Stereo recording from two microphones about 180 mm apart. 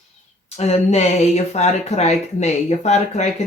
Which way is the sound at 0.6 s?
35° left (ahead or behind).